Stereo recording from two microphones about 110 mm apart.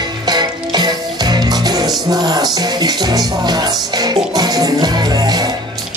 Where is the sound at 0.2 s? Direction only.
40° right (ahead or behind).